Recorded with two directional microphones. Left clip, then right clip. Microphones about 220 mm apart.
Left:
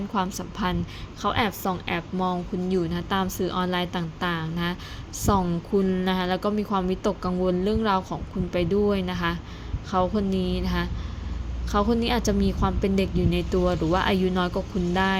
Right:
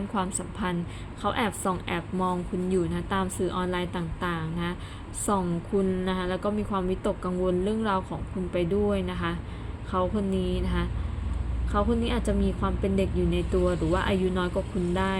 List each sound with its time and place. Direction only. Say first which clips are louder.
0.1 s a woman's voice: left 4 dB; 15° left (ahead or behind)